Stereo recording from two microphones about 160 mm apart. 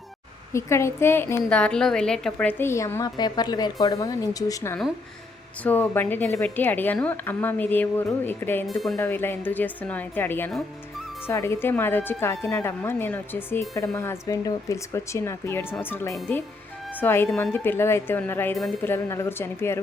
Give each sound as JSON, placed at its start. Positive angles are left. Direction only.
{"t": 0.5, "sound": "speech", "side_deg": 15}
{"t": 8.6, "sound": "speech", "side_deg": 0}
{"t": 9.0, "sound": "speech", "side_deg": 15}